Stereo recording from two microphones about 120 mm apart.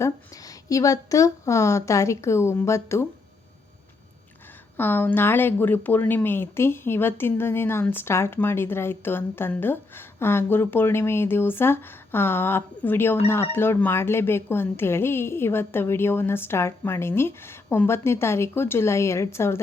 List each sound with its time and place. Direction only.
0.0 s speech: 30° left (ahead or behind)
4.8 s speech: 15° left (ahead or behind)